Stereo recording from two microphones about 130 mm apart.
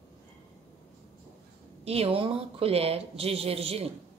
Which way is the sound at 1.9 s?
50° right (ahead or behind).